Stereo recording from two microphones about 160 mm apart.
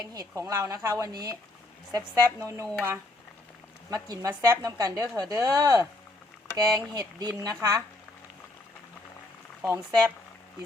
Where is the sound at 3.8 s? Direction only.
20° right (ahead or behind).